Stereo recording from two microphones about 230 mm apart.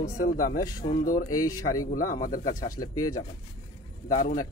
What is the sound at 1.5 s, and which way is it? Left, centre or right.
Speech, left.